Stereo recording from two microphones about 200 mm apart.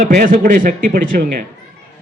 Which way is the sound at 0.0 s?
40° right (ahead or behind).